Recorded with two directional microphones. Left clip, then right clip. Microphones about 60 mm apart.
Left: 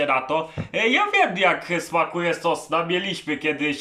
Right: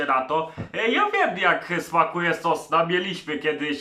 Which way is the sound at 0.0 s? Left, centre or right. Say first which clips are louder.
Left 1 dB; left.